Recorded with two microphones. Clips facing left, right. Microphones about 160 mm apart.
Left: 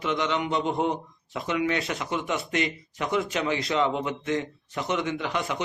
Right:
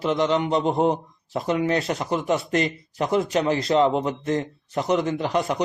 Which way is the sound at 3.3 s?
40° right (ahead or behind).